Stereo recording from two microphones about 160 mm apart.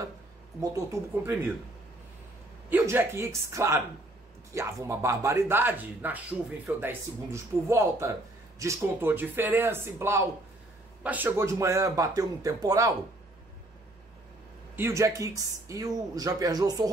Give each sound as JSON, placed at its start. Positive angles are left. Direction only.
{"t": 0.6, "sound": "speech", "side_deg": -20}
{"t": 2.7, "sound": "speech", "side_deg": -15}
{"t": 14.8, "sound": "speech", "side_deg": -20}